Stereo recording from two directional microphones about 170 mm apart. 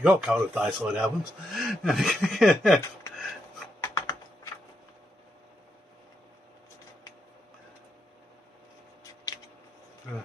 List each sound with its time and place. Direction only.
0.0 s a man's voice: 5° right (ahead or behind)
3.8 s typing: 15° left (ahead or behind)